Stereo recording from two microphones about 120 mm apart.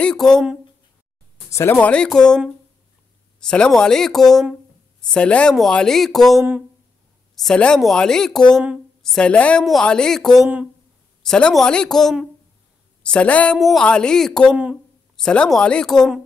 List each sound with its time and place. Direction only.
0.0 s speech: 5° left (ahead or behind)
1.5 s speech: 20° left (ahead or behind)
1.8 s a woman's voice: 10° left (ahead or behind)
14.5 s speech: 10° right (ahead or behind)
15.1 s speech: 5° left (ahead or behind)